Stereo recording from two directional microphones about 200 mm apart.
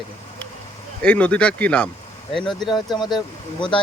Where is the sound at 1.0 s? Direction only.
5° left (ahead or behind).